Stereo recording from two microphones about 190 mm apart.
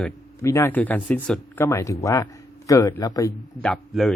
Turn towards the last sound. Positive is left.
turn(degrees=0)  # may be behind; listen again after turning